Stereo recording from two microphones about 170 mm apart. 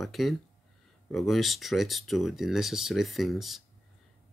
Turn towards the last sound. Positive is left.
turn(degrees=0)  # may be behind; listen again after turning